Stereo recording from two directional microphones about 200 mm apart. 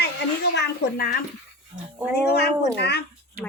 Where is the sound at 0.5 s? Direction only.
55° left (ahead or behind).